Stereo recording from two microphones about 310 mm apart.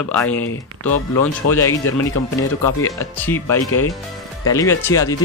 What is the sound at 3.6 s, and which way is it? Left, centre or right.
Speech, left.